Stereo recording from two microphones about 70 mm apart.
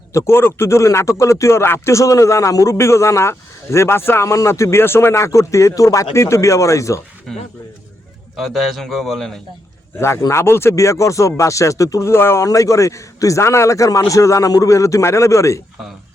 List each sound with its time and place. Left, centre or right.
0.1 s speech: left
2.7 s speech: left
7.3 s a man's voice: centre
10.0 s speech: left
12.5 s speech: left